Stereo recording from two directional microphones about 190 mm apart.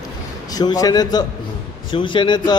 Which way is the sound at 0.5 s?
20° left (ahead or behind).